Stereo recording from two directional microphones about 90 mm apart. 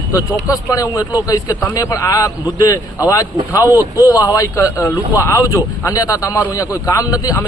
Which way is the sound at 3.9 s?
40° left (ahead or behind).